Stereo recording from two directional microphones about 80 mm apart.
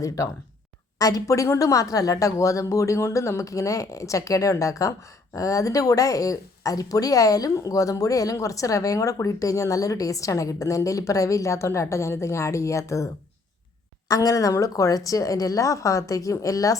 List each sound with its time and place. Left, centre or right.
0.2 s speech: left
14.1 s speech: left